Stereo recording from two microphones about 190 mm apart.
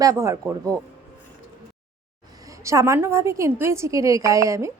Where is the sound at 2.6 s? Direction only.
15° right (ahead or behind).